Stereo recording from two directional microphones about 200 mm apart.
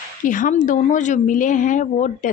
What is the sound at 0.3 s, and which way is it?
A woman's voice, 40° left (ahead or behind).